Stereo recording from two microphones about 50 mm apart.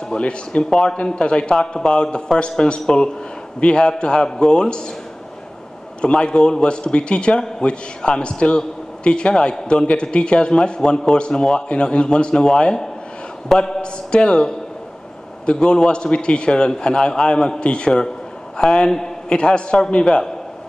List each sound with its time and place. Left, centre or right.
0.1 s a man's voice: centre
5.9 s a man's voice: centre